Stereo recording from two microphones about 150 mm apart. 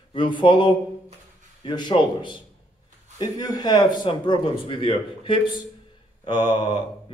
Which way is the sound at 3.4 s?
25° left (ahead or behind).